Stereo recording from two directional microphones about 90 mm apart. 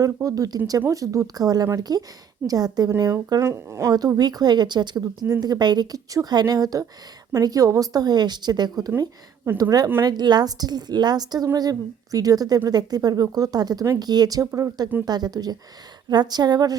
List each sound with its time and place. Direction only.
0.0 s a woman's voice: 40° right (ahead or behind)
3.4 s speech: 30° right (ahead or behind)
4.2 s a woman's voice: 50° right (ahead or behind)